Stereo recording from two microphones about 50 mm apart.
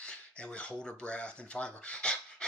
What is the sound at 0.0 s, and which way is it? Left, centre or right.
Speech, centre.